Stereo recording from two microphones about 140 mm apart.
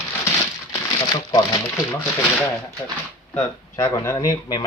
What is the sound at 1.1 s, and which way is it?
Speech, 30° left (ahead or behind).